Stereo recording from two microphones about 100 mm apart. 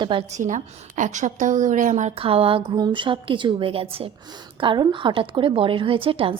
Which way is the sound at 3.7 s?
75° right (ahead or behind).